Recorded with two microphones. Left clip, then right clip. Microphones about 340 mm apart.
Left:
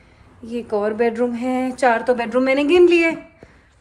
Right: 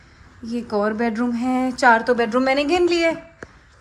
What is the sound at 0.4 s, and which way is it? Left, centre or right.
A woman's voice, centre.